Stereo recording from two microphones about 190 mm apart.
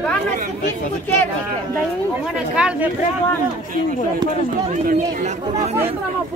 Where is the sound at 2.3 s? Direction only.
5° right (ahead or behind).